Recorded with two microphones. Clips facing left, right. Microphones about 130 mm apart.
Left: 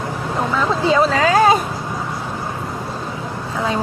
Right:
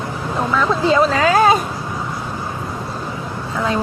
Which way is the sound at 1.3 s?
30° left (ahead or behind).